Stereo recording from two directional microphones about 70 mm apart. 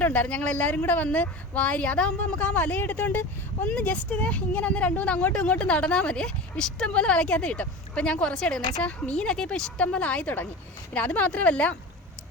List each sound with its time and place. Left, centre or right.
0.0 s a woman's voice: left